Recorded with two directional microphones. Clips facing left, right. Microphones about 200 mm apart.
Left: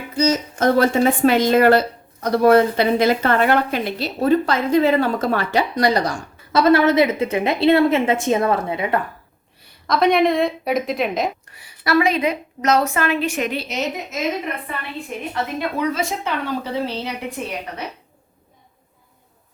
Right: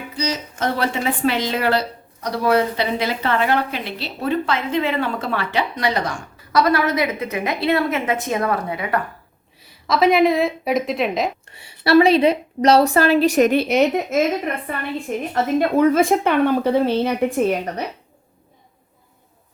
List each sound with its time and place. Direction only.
0.2 s a woman's voice: 45° left (ahead or behind)
6.5 s a woman's voice: 25° left (ahead or behind)
9.6 s a woman's voice: centre (ahead or behind)
11.5 s a woman's voice: 30° right (ahead or behind); by 14.3 s 55° right (ahead or behind)
15.3 s speech: 50° right (ahead or behind)